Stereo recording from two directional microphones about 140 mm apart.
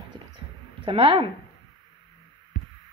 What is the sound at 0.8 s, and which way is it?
Speech, 40° right (ahead or behind).